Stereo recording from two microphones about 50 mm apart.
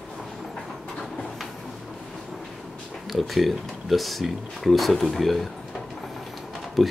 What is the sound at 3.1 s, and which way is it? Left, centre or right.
Speech, centre.